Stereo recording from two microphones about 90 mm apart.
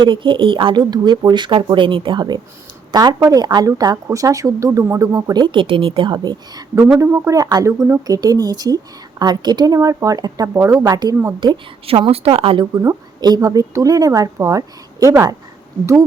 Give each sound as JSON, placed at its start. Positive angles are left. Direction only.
{"t": 0.0, "sound": "a woman's voice", "side_deg": -65}
{"t": 5.3, "sound": "a woman's voice", "side_deg": -60}
{"t": 7.0, "sound": "a woman's voice", "side_deg": -35}
{"t": 7.7, "sound": "speech", "side_deg": -30}
{"t": 8.0, "sound": "a woman's voice", "side_deg": -45}
{"t": 10.5, "sound": "a woman's voice", "side_deg": -35}
{"t": 11.3, "sound": "a woman's voice", "side_deg": -65}
{"t": 12.7, "sound": "a woman's voice", "side_deg": -35}